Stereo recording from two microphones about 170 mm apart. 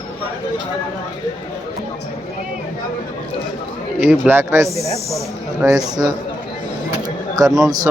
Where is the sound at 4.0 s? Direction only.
10° right (ahead or behind).